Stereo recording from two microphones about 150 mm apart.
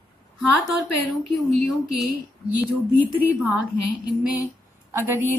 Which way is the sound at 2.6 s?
10° right (ahead or behind).